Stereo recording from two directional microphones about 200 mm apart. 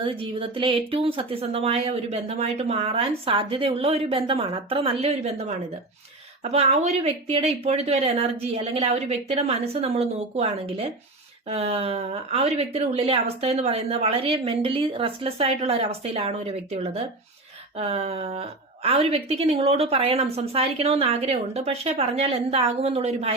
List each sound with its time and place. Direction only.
0.0 s speech: 25° right (ahead or behind)